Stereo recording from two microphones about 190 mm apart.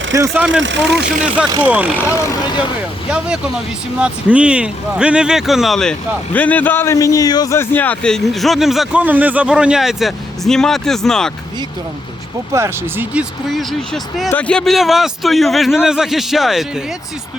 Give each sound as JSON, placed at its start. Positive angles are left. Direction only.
{"t": 0.1, "sound": "speech", "side_deg": -15}
{"t": 0.6, "sound": "speech", "side_deg": -70}
{"t": 1.6, "sound": "speech", "side_deg": -5}
{"t": 3.1, "sound": "speech", "side_deg": -5}
{"t": 12.5, "sound": "speech", "side_deg": -10}
{"t": 13.5, "sound": "speech", "side_deg": 0}